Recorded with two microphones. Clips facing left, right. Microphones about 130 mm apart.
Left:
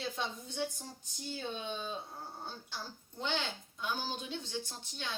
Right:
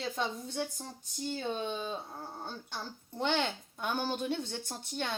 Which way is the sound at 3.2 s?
60° right (ahead or behind).